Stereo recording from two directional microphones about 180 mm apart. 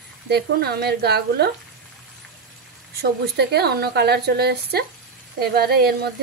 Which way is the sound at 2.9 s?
65° right (ahead or behind).